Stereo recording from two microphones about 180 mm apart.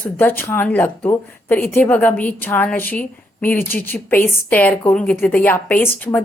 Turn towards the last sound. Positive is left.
turn(degrees=10)  # may be behind; listen again after turning